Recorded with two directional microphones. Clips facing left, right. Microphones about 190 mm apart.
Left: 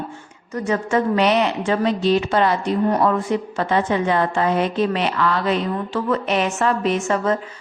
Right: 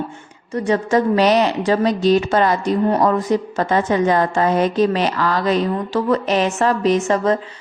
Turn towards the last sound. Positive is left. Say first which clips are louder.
# right 4 dB
turn(degrees=-35)  # may be behind; listen again after turning